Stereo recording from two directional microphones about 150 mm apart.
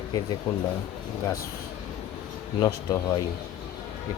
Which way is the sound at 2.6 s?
20° left (ahead or behind).